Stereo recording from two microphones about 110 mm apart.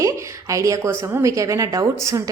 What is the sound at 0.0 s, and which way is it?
A woman's voice, 30° right (ahead or behind).